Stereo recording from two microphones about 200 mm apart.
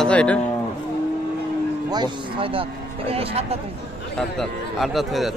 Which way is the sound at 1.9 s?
25° right (ahead or behind).